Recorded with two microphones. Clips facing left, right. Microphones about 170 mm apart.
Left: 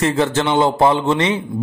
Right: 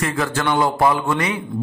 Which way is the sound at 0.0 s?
25° left (ahead or behind).